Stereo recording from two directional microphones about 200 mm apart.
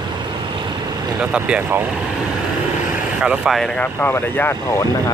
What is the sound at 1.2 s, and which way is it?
Speech, 5° right (ahead or behind).